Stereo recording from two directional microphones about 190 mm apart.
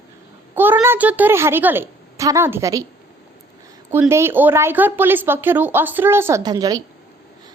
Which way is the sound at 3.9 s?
10° right (ahead or behind).